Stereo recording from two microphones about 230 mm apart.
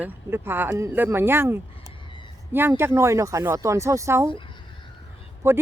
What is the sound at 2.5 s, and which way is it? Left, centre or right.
Speech, centre.